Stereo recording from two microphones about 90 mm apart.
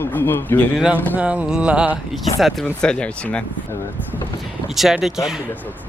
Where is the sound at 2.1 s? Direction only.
Centre (ahead or behind).